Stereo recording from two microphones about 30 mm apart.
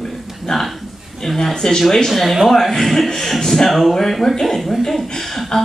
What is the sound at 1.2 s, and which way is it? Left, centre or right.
Speech, centre.